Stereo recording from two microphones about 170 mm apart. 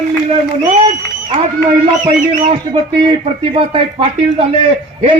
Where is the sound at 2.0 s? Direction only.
35° right (ahead or behind).